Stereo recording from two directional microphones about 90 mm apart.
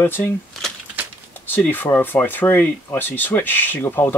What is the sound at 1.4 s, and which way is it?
Speech, 20° left (ahead or behind).